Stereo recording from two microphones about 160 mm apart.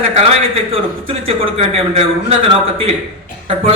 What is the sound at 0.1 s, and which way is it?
Speech, 35° right (ahead or behind).